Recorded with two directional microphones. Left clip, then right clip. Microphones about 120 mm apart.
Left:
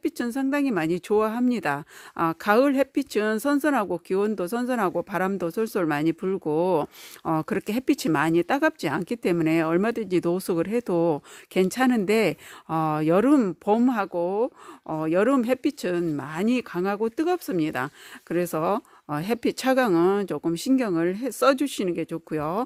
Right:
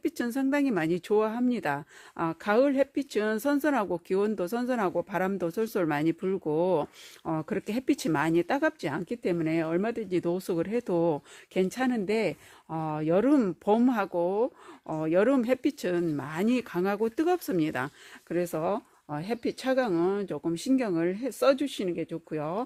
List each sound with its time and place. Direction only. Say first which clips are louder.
0.0 s speech: left 3 dB; 30° left (ahead or behind); by 6.8 s 50° left (ahead or behind)
7.3 s speech: left 6 dB; 60° left (ahead or behind); by 17.9 s 30° left (ahead or behind)
18.3 s speech: left 4 dB; 50° left (ahead or behind); by 22.6 s 75° left (ahead or behind)